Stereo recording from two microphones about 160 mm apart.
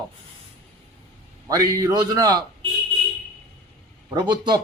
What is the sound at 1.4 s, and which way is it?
Speech, 20° right (ahead or behind).